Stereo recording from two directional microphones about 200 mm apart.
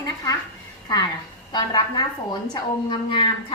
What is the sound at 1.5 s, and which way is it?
Speech, 20° left (ahead or behind).